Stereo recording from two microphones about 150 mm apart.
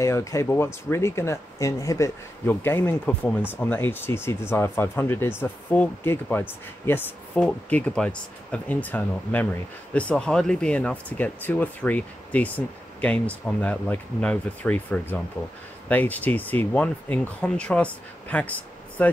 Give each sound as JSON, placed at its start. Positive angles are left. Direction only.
{"t": 0.0, "sound": "speech", "side_deg": 20}